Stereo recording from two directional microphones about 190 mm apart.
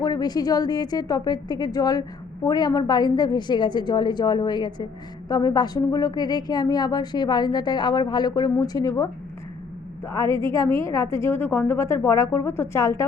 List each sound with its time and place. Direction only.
0.0 s a woman's voice: 20° left (ahead or behind)
10.2 s a woman's voice: 25° right (ahead or behind)
10.5 s a woman's voice: 15° left (ahead or behind)